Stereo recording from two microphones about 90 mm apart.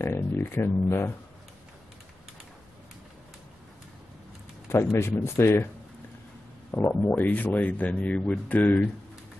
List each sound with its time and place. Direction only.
0.0 s speech: 25° left (ahead or behind)
4.6 s speech: 30° left (ahead or behind)
6.9 s speech: 20° left (ahead or behind)